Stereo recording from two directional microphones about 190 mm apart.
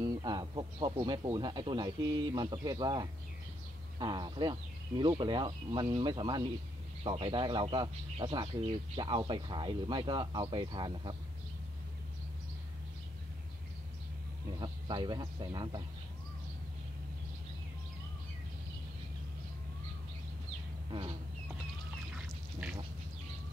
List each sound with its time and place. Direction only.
0.0 s speech: 20° right (ahead or behind)
14.6 s speech: 20° right (ahead or behind)
22.1 s duck: 5° right (ahead or behind)